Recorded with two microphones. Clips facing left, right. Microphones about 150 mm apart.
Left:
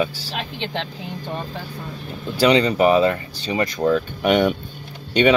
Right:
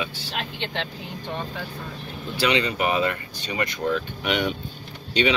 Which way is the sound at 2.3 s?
40° left (ahead or behind).